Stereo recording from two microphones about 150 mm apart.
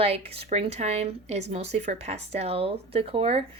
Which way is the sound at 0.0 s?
40° right (ahead or behind).